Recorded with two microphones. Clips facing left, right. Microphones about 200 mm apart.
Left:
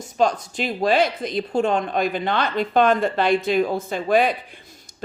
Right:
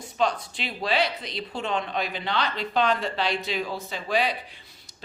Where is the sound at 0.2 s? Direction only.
45° left (ahead or behind).